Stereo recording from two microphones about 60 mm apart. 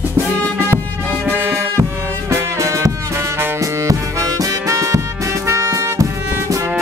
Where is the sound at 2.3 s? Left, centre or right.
Right.